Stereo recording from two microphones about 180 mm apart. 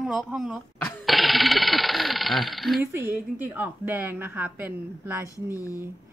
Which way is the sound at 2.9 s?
15° right (ahead or behind).